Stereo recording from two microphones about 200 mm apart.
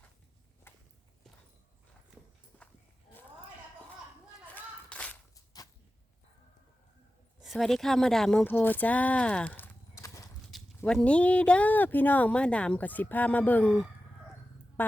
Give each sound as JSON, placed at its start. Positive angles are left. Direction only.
{"t": 0.7, "sound": "walk", "side_deg": 10}
{"t": 2.5, "sound": "livestock", "side_deg": 10}
{"t": 4.5, "sound": "a sound", "side_deg": 5}
{"t": 5.5, "sound": "a sound", "side_deg": 20}
{"t": 7.4, "sound": "speech", "side_deg": 0}
{"t": 14.8, "sound": "music", "side_deg": 10}